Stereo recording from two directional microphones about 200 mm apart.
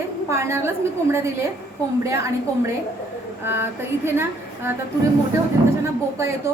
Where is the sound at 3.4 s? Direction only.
10° right (ahead or behind).